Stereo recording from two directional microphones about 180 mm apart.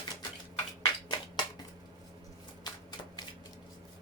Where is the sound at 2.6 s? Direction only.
25° left (ahead or behind).